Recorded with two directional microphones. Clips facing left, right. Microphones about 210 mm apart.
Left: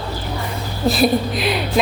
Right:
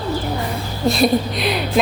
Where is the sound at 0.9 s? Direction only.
Centre (ahead or behind).